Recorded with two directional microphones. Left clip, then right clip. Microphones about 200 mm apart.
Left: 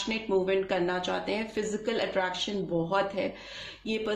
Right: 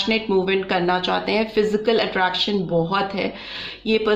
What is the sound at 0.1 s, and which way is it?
A woman's voice, 30° right (ahead or behind).